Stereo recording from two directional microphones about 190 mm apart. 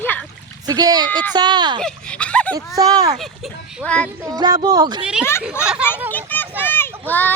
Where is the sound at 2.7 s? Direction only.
20° right (ahead or behind).